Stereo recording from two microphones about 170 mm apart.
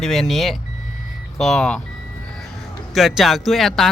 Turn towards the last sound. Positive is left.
turn(degrees=0)  # may be behind; listen again after turning